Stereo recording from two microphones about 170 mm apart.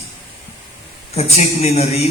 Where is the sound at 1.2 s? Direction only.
40° left (ahead or behind).